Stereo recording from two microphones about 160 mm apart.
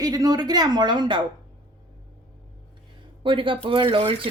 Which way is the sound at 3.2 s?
30° right (ahead or behind).